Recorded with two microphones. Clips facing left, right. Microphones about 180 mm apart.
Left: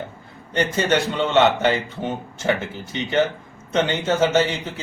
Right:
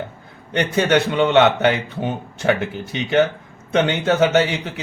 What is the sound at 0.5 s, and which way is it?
Speech, 65° right (ahead or behind).